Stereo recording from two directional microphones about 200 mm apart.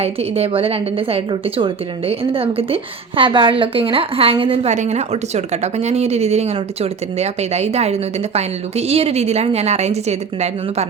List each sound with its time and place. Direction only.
0.0 s a woman's voice: 30° right (ahead or behind)